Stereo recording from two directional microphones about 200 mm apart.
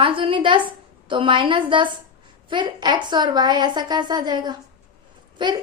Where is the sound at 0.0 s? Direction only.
25° right (ahead or behind).